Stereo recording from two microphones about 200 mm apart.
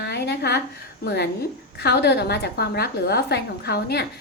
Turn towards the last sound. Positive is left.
turn(degrees=55)  # may be behind; listen again after turning